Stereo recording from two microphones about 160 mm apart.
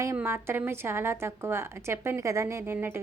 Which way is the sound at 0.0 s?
15° right (ahead or behind).